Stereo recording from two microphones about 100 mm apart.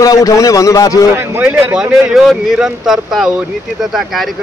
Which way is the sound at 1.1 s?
20° right (ahead or behind).